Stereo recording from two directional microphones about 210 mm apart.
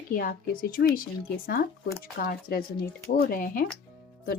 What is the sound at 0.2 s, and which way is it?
Speech, 45° left (ahead or behind).